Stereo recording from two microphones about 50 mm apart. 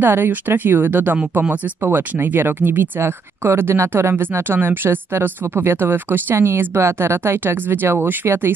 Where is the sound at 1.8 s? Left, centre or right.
Right.